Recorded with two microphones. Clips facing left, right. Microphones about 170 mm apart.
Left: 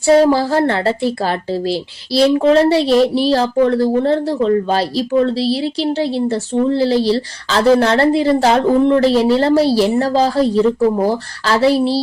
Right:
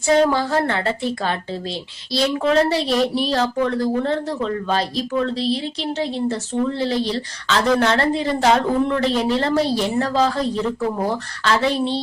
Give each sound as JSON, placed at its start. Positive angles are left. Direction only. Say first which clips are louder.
{"t": 0.0, "sound": "speech", "louder": "left 6 dB", "side_deg": 30}